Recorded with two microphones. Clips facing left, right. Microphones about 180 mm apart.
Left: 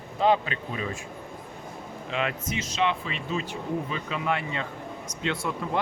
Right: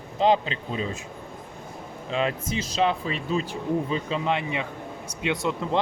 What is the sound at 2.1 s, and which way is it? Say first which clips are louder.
Speech: right 3 dB; 35° right (ahead or behind).